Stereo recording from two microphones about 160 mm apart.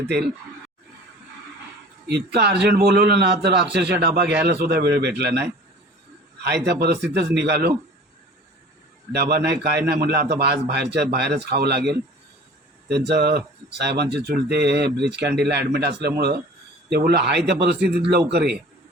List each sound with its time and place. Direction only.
2.0 s a man's voice: 90° right
2.7 s a man's voice: 75° right (ahead or behind)
9.1 s a man's voice: 85° right
12.9 s a man's voice: 90° right